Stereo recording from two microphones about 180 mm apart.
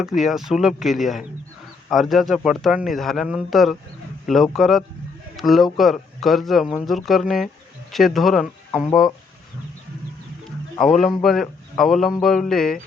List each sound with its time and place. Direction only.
0.2 s a man's voice: centre (ahead or behind)
10.8 s a man's voice: centre (ahead or behind)